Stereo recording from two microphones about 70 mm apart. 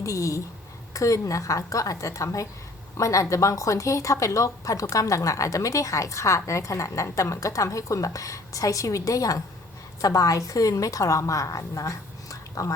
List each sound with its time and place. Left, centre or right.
0.0 s a woman's voice: left